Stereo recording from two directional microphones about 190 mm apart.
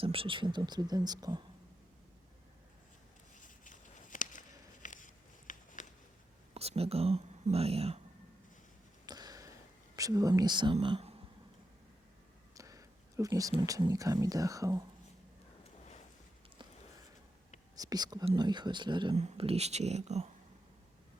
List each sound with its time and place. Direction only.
0.0 s speech: 30° right (ahead or behind)
3.3 s a sound: 45° left (ahead or behind)
6.5 s speech: 30° right (ahead or behind)
9.0 s whispering: 20° right (ahead or behind)
12.5 s a sound: 15° right (ahead or behind)
13.7 s speech: 20° right (ahead or behind)
17.7 s speech: 20° right (ahead or behind); by 20.3 s 35° right (ahead or behind)